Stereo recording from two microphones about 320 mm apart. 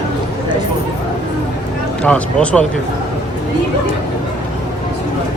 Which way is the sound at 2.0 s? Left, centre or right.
Centre.